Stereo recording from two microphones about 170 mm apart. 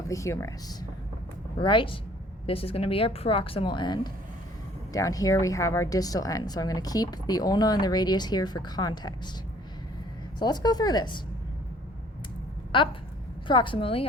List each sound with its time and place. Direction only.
0.1 s a woman's voice: 15° left (ahead or behind)
10.4 s speech: 25° left (ahead or behind)
12.7 s a sound: 30° left (ahead or behind)
13.5 s a woman's voice: 30° left (ahead or behind)